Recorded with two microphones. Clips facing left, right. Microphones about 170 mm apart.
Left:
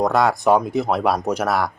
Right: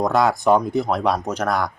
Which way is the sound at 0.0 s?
Centre (ahead or behind).